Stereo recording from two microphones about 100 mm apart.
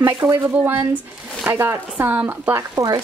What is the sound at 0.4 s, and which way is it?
Speech, 20° right (ahead or behind).